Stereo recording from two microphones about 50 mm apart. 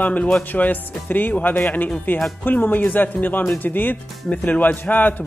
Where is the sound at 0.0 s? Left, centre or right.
Left.